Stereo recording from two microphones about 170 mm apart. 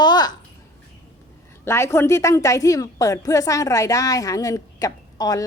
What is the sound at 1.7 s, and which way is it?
A woman's voice, 15° left (ahead or behind).